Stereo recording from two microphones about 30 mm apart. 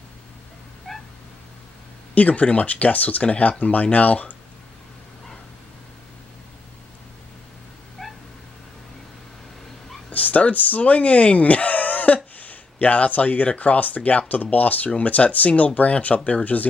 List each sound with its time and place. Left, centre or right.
0.9 s cat: centre
2.1 s speech: left
8.0 s cat: centre
10.0 s speech: left